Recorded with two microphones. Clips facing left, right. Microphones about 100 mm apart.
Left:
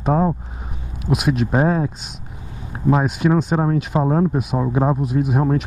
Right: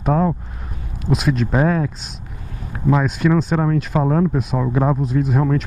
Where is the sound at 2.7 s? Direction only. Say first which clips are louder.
Even; 35° left (ahead or behind).